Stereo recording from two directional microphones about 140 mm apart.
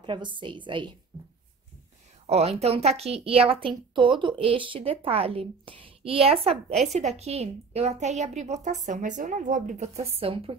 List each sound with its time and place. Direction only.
0.0 s a woman's voice: 35° right (ahead or behind)
2.2 s a woman's voice: 45° right (ahead or behind); by 9.8 s 65° right (ahead or behind)
10.1 s a woman's voice: 40° right (ahead or behind)